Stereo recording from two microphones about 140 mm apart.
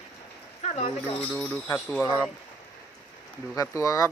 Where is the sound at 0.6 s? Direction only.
45° left (ahead or behind).